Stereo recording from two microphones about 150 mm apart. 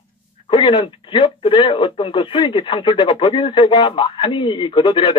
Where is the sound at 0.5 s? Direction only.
35° left (ahead or behind).